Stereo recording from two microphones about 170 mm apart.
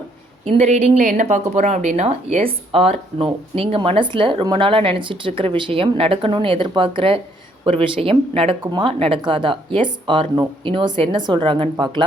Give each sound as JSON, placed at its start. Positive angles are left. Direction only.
{"t": 0.4, "sound": "speech", "side_deg": -40}